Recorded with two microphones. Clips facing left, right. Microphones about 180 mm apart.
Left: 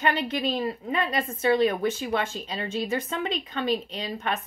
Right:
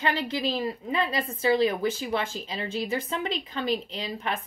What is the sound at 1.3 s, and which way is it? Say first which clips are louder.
A woman's voice: left 1 dB; 30° right (ahead or behind).